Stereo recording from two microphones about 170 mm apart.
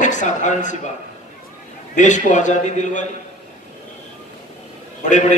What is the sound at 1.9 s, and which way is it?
A man's voice, 45° left (ahead or behind).